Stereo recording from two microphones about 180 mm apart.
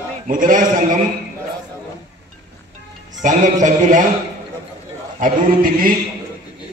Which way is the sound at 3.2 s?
45° right (ahead or behind).